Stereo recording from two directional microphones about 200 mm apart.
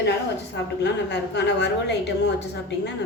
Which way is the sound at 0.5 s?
60° left (ahead or behind).